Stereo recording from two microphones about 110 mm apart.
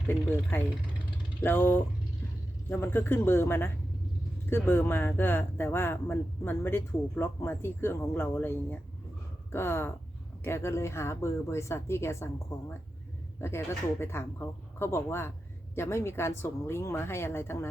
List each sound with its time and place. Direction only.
0.5 s speech: 20° left (ahead or behind)